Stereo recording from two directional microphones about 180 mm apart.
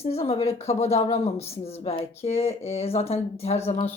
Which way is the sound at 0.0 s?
35° left (ahead or behind).